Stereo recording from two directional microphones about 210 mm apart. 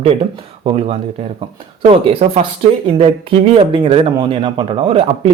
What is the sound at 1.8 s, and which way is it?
Speech, 30° right (ahead or behind).